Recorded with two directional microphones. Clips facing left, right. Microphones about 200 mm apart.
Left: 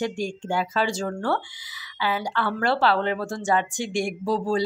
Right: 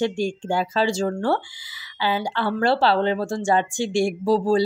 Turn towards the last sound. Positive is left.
turn(degrees=-35)  # may be behind; listen again after turning